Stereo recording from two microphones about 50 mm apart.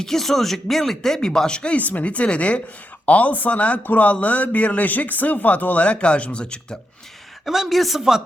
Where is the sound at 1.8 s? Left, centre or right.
Left.